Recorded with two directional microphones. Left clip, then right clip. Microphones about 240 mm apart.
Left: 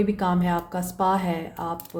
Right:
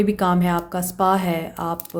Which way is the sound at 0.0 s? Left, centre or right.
Right.